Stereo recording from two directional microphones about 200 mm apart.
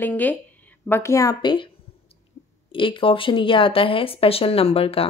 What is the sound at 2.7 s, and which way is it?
Speech, 25° left (ahead or behind).